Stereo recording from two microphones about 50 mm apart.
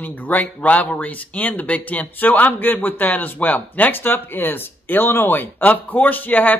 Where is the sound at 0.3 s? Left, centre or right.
Left.